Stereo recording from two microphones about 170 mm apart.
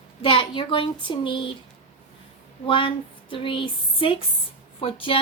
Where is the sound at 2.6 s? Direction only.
30° left (ahead or behind).